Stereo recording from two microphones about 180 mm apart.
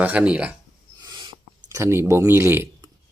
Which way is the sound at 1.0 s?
25° right (ahead or behind).